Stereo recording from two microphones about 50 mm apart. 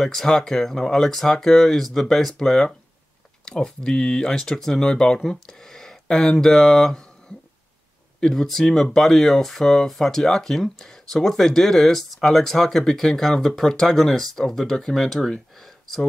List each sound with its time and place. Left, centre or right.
0.0 s speech: centre
8.2 s speech: centre
15.6 s a sound: centre